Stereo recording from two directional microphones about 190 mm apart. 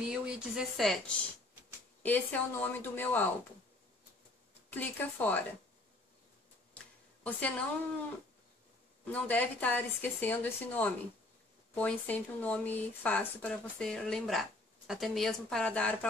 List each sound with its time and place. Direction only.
0.1 s a woman's voice: 5° right (ahead or behind)
4.6 s speech: 10° left (ahead or behind)
7.2 s speech: 5° left (ahead or behind)
9.0 s a woman's voice: 10° left (ahead or behind)